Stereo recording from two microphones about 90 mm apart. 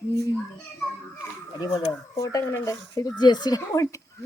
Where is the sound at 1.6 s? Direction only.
40° left (ahead or behind).